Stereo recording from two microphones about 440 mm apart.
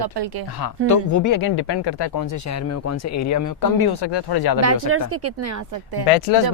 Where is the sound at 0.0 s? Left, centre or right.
Right.